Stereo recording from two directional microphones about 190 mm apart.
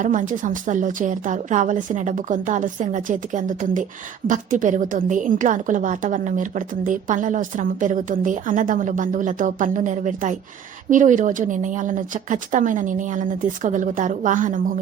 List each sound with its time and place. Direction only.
0.0 s a woman's voice: 45° right (ahead or behind)